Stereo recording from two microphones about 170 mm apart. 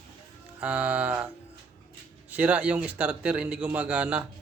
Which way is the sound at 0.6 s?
10° right (ahead or behind).